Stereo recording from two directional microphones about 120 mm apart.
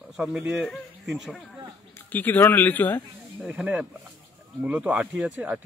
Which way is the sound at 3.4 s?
10° right (ahead or behind).